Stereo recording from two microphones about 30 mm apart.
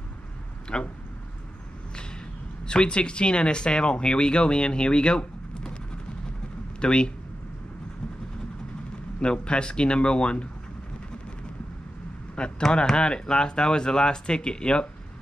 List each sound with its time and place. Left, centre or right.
0.7 s speech: left
2.6 s speech: left
6.8 s speech: left
9.2 s speech: left
12.4 s speech: left